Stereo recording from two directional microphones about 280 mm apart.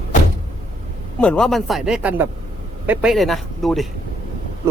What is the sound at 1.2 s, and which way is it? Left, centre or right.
Speech, centre.